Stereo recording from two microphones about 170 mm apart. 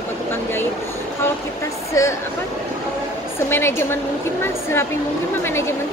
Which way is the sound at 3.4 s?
15° left (ahead or behind).